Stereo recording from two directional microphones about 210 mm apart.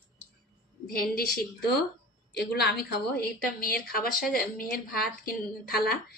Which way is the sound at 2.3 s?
50° left (ahead or behind).